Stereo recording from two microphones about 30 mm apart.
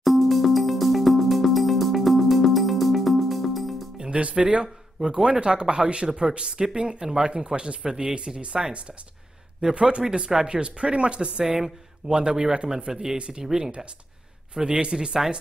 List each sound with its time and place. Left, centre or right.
0.0 s music: centre
4.1 s speech: right
5.0 s speech: right
8.6 s speech: centre
9.8 s speech: right